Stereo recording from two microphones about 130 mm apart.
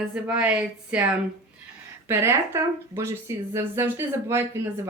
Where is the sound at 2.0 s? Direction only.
20° right (ahead or behind).